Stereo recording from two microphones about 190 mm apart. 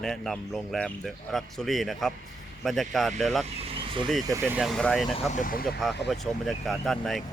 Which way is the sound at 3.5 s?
30° right (ahead or behind).